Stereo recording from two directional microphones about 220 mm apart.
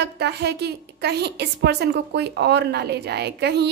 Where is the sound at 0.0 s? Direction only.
50° right (ahead or behind).